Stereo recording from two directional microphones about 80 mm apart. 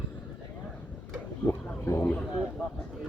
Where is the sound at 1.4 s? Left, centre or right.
Left.